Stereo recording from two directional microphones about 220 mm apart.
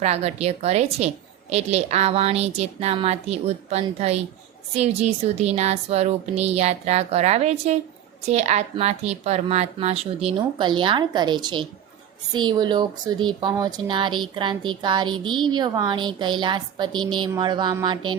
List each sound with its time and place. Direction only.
0.0 s speech: 30° right (ahead or behind)